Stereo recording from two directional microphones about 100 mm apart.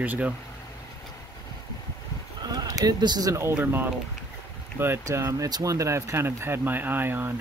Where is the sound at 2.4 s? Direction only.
40° right (ahead or behind); by 7.3 s 20° right (ahead or behind).